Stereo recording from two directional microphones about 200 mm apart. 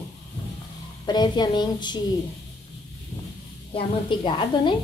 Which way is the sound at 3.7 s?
25° left (ahead or behind).